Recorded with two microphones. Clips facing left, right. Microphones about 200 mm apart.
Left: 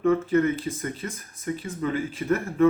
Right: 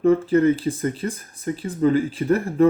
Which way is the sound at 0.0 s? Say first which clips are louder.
Right 4 dB; 30° right (ahead or behind).